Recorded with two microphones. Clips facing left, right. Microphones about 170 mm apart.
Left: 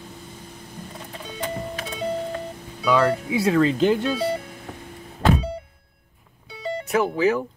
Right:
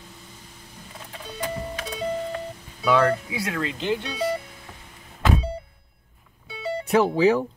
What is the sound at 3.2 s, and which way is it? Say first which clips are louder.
Speech: left 9 dB; 25° left (ahead or behind).